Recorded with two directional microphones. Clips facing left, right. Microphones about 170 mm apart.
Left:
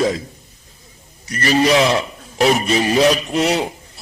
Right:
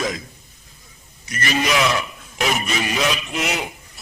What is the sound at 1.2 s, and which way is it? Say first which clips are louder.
A man's voice: left 7 dB; 35° left (ahead or behind).